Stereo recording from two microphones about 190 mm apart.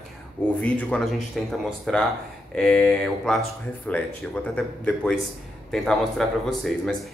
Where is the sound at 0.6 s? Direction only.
5° left (ahead or behind).